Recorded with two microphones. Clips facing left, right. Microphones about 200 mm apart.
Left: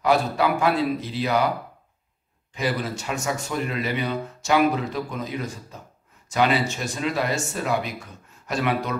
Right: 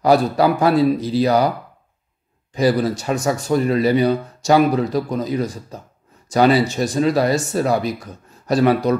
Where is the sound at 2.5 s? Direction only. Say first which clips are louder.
Right 9 dB; 35° right (ahead or behind).